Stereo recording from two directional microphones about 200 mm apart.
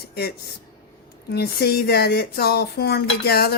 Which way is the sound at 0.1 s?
50° left (ahead or behind).